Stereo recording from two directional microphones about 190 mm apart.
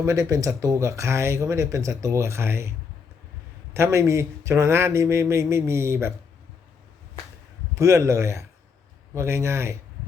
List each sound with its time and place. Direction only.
0.0 s speech: 15° right (ahead or behind)
3.8 s speech: 15° right (ahead or behind)
7.8 s speech: 15° right (ahead or behind)